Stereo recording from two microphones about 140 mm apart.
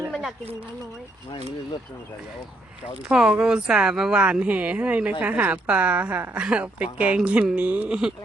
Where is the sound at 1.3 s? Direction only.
50° left (ahead or behind).